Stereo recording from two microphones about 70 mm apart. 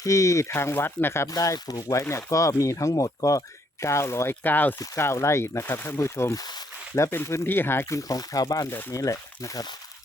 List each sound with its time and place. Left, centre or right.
0.0 s speech: left
1.3 s speech: left
4.9 s speech: left
6.3 s speech: left
6.9 s speech: left
7.9 s speech: left